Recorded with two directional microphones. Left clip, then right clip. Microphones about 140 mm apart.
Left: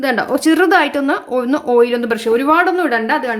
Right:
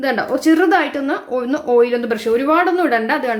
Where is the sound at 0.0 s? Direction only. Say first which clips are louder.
Left 2 dB; 20° left (ahead or behind).